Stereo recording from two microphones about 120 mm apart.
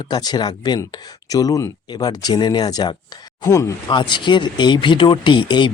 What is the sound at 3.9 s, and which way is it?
Speech, 40° left (ahead or behind).